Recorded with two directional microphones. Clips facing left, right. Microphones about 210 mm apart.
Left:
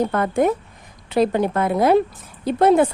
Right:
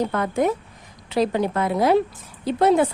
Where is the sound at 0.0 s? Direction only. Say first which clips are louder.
Left 3 dB; 50° left (ahead or behind).